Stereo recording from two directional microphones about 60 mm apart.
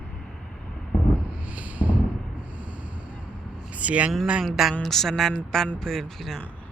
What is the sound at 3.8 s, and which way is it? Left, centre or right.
Speech, right.